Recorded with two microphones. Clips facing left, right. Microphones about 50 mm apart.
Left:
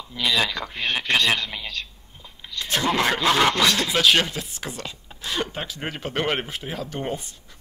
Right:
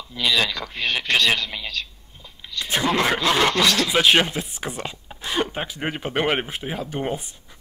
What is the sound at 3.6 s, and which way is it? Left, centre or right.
Speech, left.